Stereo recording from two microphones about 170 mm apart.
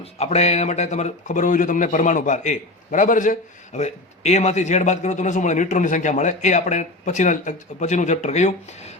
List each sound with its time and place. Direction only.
0.0 s speech: 40° left (ahead or behind)